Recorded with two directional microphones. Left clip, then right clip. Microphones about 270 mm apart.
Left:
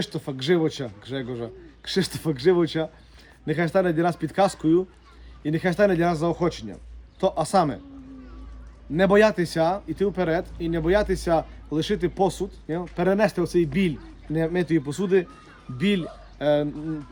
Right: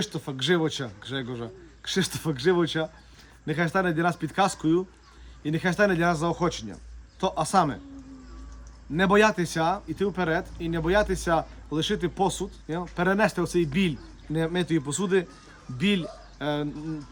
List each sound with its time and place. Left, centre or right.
0.1 s speech: centre
9.0 s speech: centre
15.7 s speech: left
16.4 s speech: centre